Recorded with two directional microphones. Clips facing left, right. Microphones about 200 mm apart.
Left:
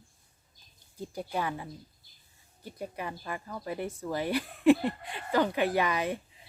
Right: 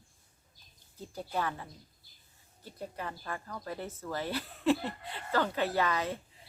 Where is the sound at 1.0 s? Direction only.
15° left (ahead or behind).